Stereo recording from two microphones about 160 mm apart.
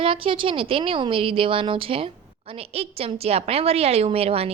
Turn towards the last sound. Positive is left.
turn(degrees=-40)  # may be behind; listen again after turning